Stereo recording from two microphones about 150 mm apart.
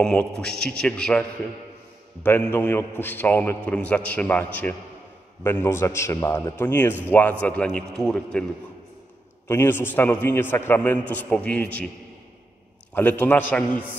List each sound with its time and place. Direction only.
0.0 s a man's voice: 5° left (ahead or behind)
2.2 s a man's voice: 15° left (ahead or behind)
9.5 s a man's voice: 15° left (ahead or behind)
12.9 s a man's voice: 10° left (ahead or behind)